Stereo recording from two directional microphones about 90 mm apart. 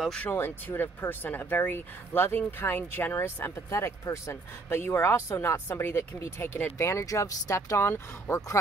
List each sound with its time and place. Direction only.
0.3 s speech: 25° left (ahead or behind)